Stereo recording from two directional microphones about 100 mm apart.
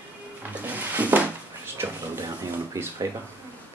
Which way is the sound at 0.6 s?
20° right (ahead or behind).